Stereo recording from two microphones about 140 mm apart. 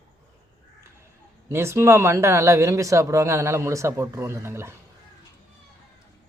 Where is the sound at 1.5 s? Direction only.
20° right (ahead or behind).